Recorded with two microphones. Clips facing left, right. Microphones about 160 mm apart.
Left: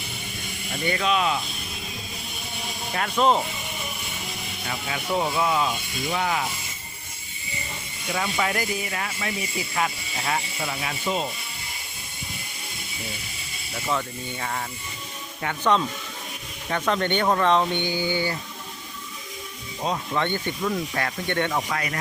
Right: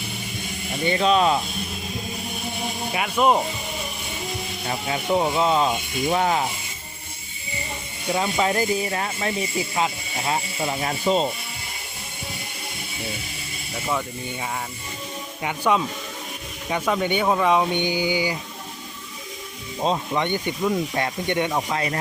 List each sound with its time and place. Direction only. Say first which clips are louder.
0.9 s speech: right 5 dB; 30° right (ahead or behind)
2.9 s speech: right 1 dB; 10° right (ahead or behind)
4.6 s speech: right 4 dB; 30° right (ahead or behind)
5.1 s speech: right 3 dB; 20° right (ahead or behind)
8.1 s speech: right 4 dB; 25° right (ahead or behind)
9.7 s speech: right 2 dB; 20° right (ahead or behind)
10.8 s speech: right 6 dB; 35° right (ahead or behind)
15.4 s speech: right 1 dB; 10° right (ahead or behind)
19.8 s speech: right 3 dB; 20° right (ahead or behind)